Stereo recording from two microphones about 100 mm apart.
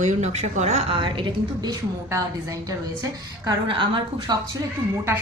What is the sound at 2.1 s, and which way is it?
A woman's voice, 35° right (ahead or behind).